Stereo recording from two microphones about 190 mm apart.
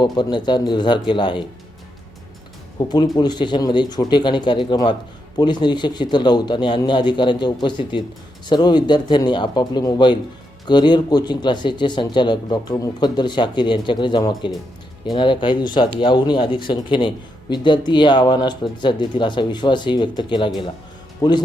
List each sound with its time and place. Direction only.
0.0 s a man's voice: 25° left (ahead or behind)
2.7 s a man's voice: 20° left (ahead or behind)